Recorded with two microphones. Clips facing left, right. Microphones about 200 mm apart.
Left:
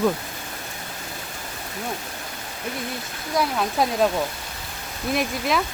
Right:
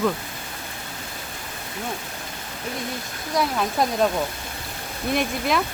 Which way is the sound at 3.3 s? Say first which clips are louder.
Even; centre (ahead or behind).